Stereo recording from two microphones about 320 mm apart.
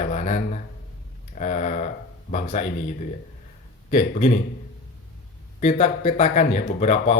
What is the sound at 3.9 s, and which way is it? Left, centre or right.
Speech, left.